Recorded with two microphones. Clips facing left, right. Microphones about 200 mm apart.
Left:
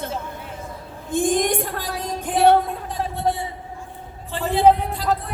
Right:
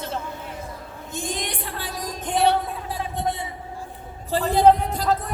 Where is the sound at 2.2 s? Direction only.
Centre (ahead or behind).